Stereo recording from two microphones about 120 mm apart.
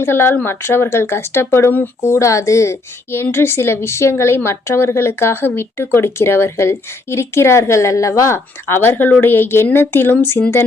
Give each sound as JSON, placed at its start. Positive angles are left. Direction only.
{"t": 0.0, "sound": "speech", "side_deg": 20}